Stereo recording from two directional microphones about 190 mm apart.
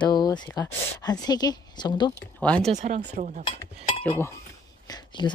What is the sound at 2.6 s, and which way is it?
Speech, 40° right (ahead or behind).